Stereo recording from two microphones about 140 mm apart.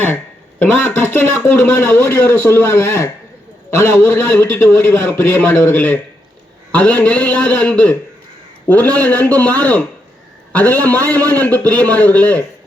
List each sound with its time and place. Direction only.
0.6 s a man's voice: 15° left (ahead or behind)